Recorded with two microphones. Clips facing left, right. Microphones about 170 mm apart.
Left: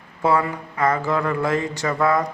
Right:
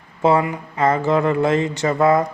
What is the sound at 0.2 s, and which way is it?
Speech, 20° right (ahead or behind).